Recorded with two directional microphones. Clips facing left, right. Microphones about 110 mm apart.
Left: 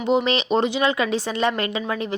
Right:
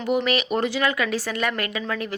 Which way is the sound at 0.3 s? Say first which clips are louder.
Left 2 dB; 25° left (ahead or behind).